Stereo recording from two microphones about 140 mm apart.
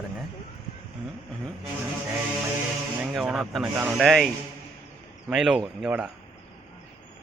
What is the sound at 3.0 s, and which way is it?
Speech, 5° right (ahead or behind).